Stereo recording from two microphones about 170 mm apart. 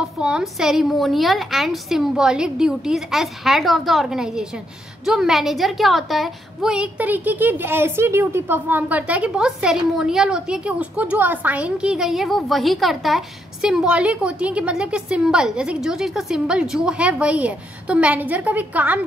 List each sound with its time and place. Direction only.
0.0 s a woman's voice: 5° right (ahead or behind)